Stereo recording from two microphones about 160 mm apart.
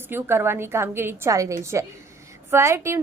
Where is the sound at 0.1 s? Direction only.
15° right (ahead or behind).